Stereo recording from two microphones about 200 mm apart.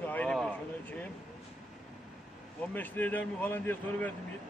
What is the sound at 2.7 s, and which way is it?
Speech, 10° left (ahead or behind).